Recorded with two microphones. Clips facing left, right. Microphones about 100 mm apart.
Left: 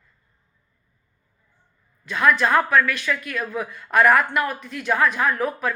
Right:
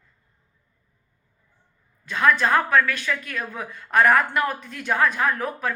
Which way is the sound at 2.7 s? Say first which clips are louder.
Left 1 dB; 35° right (ahead or behind).